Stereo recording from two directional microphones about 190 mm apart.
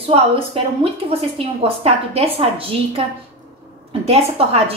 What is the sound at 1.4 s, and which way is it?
A woman's voice, 30° right (ahead or behind).